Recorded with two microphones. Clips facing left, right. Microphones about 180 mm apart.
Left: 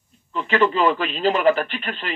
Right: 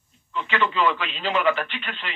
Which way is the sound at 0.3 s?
40° left (ahead or behind).